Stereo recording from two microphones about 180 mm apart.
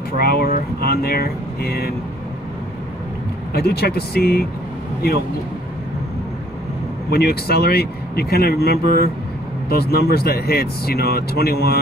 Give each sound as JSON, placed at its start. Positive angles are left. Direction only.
{"t": 0.2, "sound": "speech", "side_deg": 60}
{"t": 3.5, "sound": "speech", "side_deg": 60}
{"t": 7.1, "sound": "speech", "side_deg": 60}